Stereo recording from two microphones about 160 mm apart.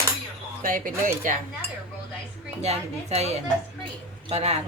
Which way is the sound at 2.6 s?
45° right (ahead or behind).